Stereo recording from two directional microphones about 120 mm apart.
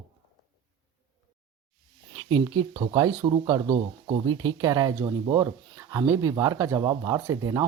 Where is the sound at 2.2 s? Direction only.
45° right (ahead or behind).